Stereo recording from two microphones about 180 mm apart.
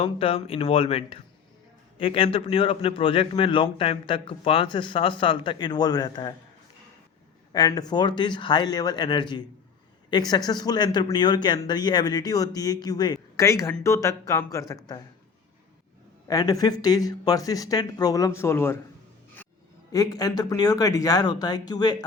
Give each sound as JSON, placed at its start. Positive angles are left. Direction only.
{"t": 0.0, "sound": "a man's voice", "side_deg": 30}
{"t": 7.5, "sound": "a man's voice", "side_deg": 20}
{"t": 16.2, "sound": "a man's voice", "side_deg": 20}
{"t": 19.9, "sound": "a man's voice", "side_deg": 20}